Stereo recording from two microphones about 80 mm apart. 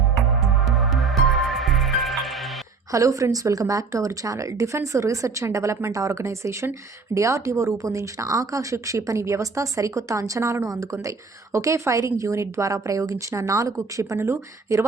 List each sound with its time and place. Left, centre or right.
0.6 s music: centre
2.9 s a woman's voice: right